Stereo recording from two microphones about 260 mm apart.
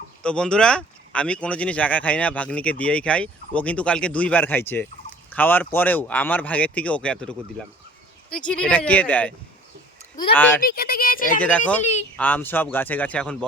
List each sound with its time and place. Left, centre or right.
0.2 s speech: centre
10.6 s speech: left
11.3 s speech: centre